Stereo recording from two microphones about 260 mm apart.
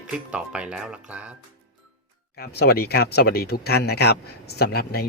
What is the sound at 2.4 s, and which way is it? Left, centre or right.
Speech, left.